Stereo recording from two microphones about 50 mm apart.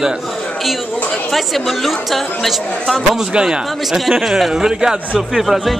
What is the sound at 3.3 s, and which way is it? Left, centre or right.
Speech, centre.